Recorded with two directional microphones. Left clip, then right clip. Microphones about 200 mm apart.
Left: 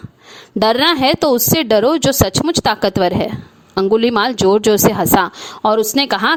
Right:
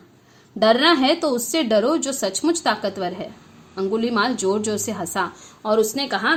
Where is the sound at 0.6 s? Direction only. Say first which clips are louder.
Left 3 dB; 55° left (ahead or behind).